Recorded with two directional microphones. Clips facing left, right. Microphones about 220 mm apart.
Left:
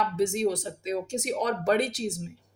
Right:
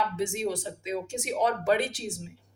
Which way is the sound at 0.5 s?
40° left (ahead or behind).